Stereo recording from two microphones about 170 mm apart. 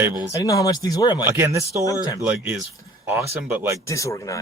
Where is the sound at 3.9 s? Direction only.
20° left (ahead or behind).